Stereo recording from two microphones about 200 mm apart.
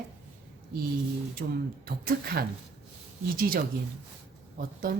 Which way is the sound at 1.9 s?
50° right (ahead or behind).